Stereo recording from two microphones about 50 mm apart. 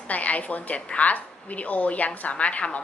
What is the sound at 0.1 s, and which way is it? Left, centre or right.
A woman's voice, left.